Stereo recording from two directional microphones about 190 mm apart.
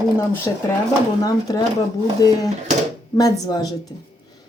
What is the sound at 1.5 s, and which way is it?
Speech, 20° left (ahead or behind).